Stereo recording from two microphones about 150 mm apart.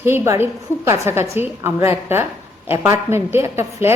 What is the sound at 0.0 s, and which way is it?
A woman's voice, 15° right (ahead or behind).